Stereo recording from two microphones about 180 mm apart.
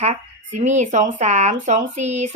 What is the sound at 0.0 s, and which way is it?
A woman's voice, 40° right (ahead or behind).